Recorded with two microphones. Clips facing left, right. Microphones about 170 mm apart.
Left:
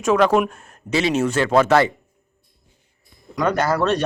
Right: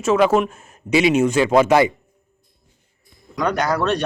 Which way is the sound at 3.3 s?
Centre (ahead or behind).